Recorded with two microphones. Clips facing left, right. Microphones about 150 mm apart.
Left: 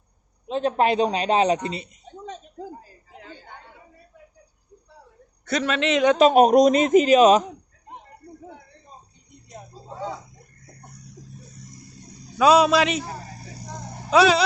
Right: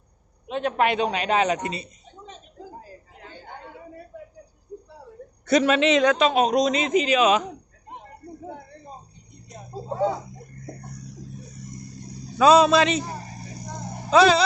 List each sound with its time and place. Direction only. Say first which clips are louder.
0.4 s a man's voice: left 2 dB; 30° left (ahead or behind)
5.5 s a man's voice: right 4 dB; 10° right (ahead or behind)
6.1 s speech: left 6 dB; 45° left (ahead or behind)
12.4 s a man's voice: right 1 dB; 10° left (ahead or behind)
14.1 s a man's voice: right 1 dB; 10° left (ahead or behind)